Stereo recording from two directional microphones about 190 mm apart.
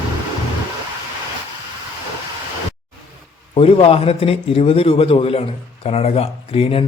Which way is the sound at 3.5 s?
30° left (ahead or behind).